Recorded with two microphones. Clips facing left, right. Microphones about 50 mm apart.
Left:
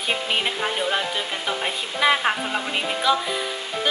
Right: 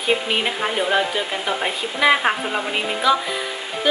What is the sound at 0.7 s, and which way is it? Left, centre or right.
Speech, centre.